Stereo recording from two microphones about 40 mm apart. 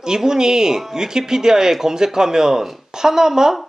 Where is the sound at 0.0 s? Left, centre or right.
Centre.